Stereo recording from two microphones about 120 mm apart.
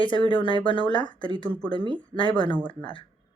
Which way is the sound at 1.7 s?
45° right (ahead or behind).